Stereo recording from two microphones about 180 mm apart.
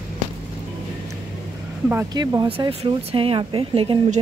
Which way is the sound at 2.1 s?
25° right (ahead or behind).